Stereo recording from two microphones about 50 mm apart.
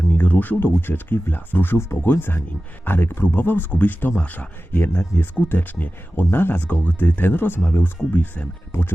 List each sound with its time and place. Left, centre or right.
0.2 s speech: left
4.7 s speech: left